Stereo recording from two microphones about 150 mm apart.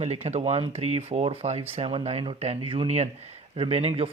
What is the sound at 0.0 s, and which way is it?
Speech, 45° right (ahead or behind).